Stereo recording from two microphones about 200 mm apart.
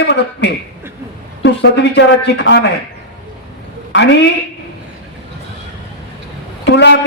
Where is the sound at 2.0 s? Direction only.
60° left (ahead or behind).